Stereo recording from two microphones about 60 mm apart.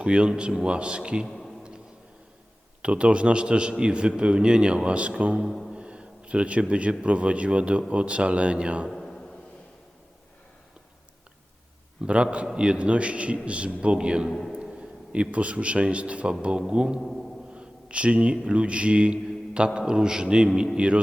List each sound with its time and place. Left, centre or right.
0.0 s a man's voice: centre
1.3 s a sound: centre
2.8 s a man's voice: centre
5.5 s speech: centre
5.7 s a sound: centre
7.0 s a man's voice: centre
8.9 s a sound: centre
12.0 s a man's voice: centre
17.0 s a man's voice: centre
17.5 s a man's voice: centre